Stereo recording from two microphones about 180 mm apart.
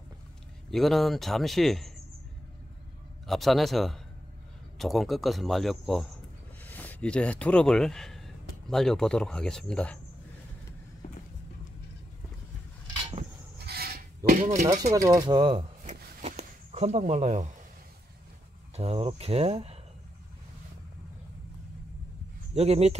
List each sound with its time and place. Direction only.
0.7 s speech: centre (ahead or behind)
3.3 s speech: centre (ahead or behind)
13.6 s a sound: 60° right (ahead or behind)
14.4 s speech: 40° right (ahead or behind)
14.8 s speech: 20° right (ahead or behind)
15.8 s a sound: 40° right (ahead or behind)
18.8 s speech: 35° right (ahead or behind)
22.5 s speech: 35° right (ahead or behind)